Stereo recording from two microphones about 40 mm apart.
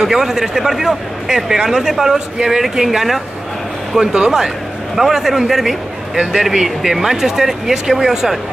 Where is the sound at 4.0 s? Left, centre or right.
Centre.